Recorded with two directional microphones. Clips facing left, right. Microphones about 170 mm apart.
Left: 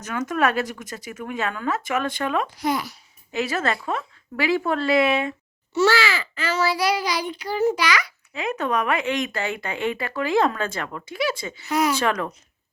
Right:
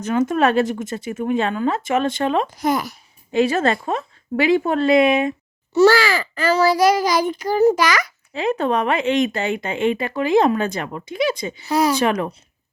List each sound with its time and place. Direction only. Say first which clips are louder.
0.0 s speech: right 6 dB; 30° right (ahead or behind)
2.5 s a child's voice: right 4 dB; 45° right (ahead or behind)
3.3 s speech: right 7 dB; 25° right (ahead or behind)
5.7 s a child's voice: right 6 dB; 40° right (ahead or behind)
8.3 s speech: right 5 dB; 30° right (ahead or behind)
11.6 s speech: right 4 dB; 35° right (ahead or behind)
11.9 s speech: right 4 dB; 20° right (ahead or behind)